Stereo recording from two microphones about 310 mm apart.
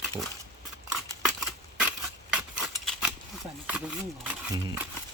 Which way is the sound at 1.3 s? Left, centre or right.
Centre.